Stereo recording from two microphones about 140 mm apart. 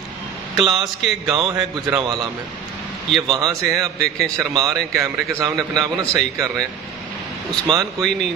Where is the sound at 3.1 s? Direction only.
Centre (ahead or behind).